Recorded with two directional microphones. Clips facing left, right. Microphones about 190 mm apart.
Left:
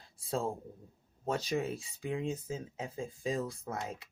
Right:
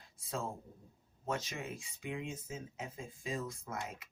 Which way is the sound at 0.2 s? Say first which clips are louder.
Left 6 dB; 30° left (ahead or behind).